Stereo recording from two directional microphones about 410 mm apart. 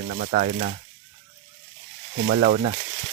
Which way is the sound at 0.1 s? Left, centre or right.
Centre.